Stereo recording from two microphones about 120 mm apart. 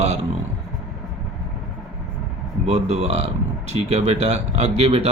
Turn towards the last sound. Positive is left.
turn(degrees=-55)  # may be behind; listen again after turning